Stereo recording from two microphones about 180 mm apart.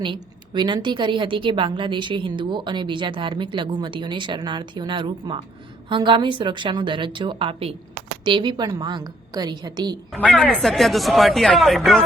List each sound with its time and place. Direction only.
0.0 s a woman's voice: 25° right (ahead or behind)
10.1 s speech: 5° left (ahead or behind)